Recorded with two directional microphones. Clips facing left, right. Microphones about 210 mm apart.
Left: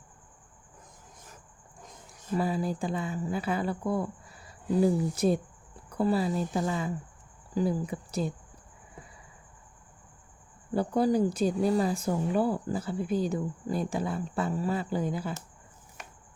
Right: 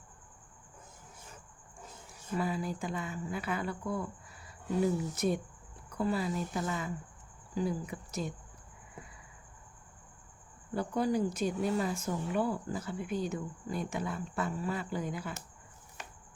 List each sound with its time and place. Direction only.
1.8 s a sound: 5° right (ahead or behind)
2.4 s speech: 35° left (ahead or behind)
10.8 s speech: 35° left (ahead or behind)